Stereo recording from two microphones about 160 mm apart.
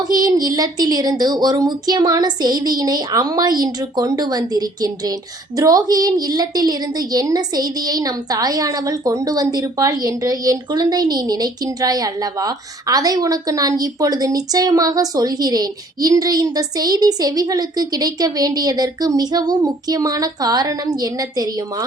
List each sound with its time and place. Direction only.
0.1 s a woman's voice: 25° right (ahead or behind)